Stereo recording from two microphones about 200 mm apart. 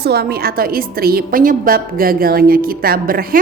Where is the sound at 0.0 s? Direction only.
50° right (ahead or behind).